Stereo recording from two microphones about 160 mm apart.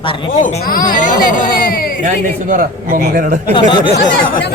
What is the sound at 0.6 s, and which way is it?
Speech, 65° left (ahead or behind).